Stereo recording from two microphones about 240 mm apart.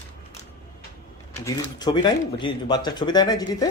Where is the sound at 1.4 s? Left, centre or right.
Centre.